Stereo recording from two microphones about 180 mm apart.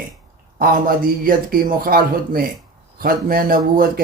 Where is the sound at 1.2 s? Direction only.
50° right (ahead or behind).